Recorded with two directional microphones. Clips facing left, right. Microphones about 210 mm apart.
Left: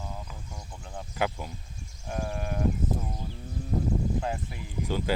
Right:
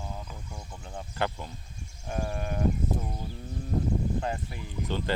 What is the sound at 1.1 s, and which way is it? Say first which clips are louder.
Speech: left 2 dB; 5° left (ahead or behind).